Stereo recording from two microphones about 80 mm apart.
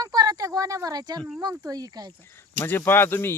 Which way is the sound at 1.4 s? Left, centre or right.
Right.